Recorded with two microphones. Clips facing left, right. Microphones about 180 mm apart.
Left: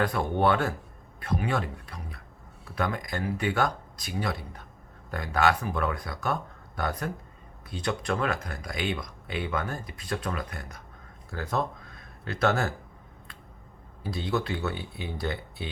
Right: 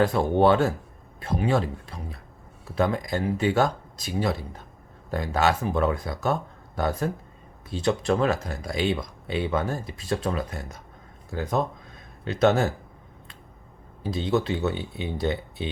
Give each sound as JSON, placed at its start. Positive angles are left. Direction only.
{"t": 0.0, "sound": "speech", "side_deg": -25}
{"t": 14.0, "sound": "speech", "side_deg": -20}